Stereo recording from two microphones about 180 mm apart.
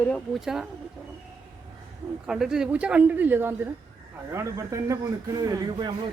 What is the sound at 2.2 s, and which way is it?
Speech, 5° right (ahead or behind).